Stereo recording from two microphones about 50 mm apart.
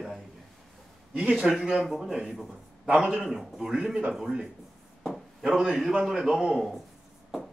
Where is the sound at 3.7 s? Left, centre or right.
Centre.